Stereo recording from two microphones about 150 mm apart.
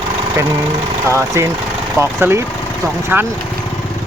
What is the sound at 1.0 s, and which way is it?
Speech, 20° right (ahead or behind).